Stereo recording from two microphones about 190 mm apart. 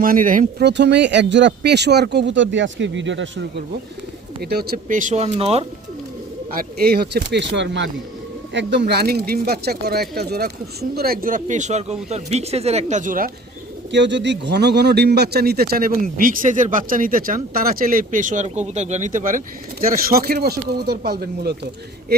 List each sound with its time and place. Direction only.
0.0 s speech: 45° right (ahead or behind)
0.7 s speech: 65° right (ahead or behind)
4.4 s speech: 55° right (ahead or behind); by 5.6 s 30° right (ahead or behind)
6.5 s speech: 50° right (ahead or behind)
13.9 s speech: 70° right (ahead or behind)